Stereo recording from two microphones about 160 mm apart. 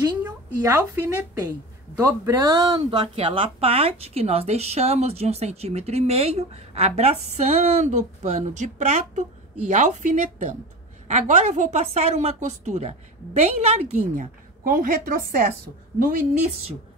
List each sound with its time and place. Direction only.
0.6 s a woman's voice: 20° right (ahead or behind); by 16.3 s 55° right (ahead or behind)